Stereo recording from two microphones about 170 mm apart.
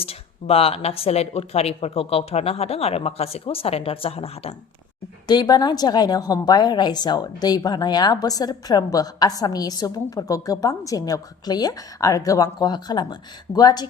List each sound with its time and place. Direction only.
0.0 s speech: 35° left (ahead or behind)
5.3 s a woman's voice: 25° left (ahead or behind)